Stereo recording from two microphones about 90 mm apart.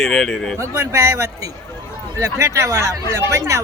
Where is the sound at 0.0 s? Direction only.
5° left (ahead or behind).